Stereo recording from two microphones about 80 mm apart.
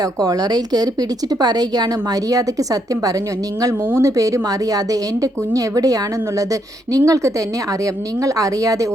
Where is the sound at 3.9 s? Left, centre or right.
Right.